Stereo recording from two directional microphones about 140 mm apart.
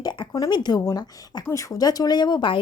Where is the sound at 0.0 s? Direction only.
30° left (ahead or behind).